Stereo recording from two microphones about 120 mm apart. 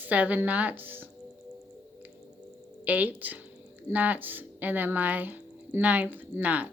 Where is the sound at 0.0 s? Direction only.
15° right (ahead or behind).